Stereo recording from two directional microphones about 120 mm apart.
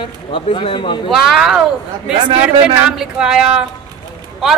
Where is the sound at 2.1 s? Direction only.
55° right (ahead or behind).